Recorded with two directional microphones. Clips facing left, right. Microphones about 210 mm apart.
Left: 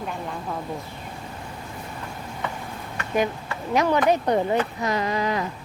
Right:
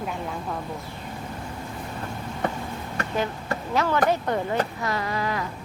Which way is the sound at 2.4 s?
40° right (ahead or behind).